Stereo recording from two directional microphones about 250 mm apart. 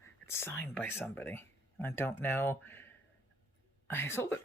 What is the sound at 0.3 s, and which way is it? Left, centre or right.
Speech, centre.